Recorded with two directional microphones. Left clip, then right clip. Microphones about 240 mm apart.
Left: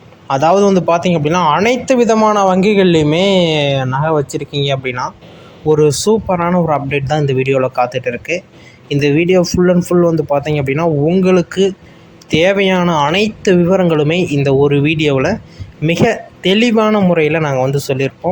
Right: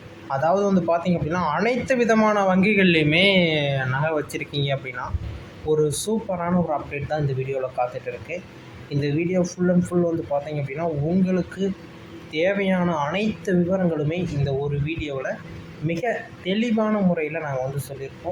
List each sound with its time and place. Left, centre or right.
0.3 s speech: left